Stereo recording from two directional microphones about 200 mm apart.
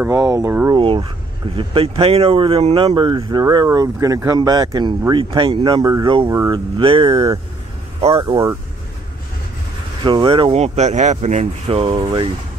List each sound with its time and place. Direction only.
0.0 s speech: 15° right (ahead or behind)
0.7 s speech: 25° right (ahead or behind)
10.0 s speech: 25° right (ahead or behind)